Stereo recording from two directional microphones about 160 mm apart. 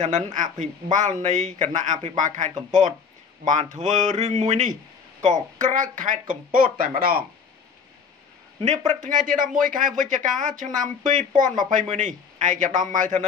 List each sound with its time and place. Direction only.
0.0 s speech: 50° right (ahead or behind); by 7.2 s 65° right (ahead or behind)
8.5 s speech: 45° right (ahead or behind)